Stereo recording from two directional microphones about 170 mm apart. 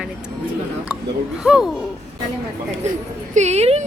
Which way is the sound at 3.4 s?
40° right (ahead or behind).